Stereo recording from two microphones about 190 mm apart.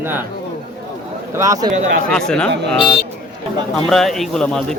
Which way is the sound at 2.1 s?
5° left (ahead or behind).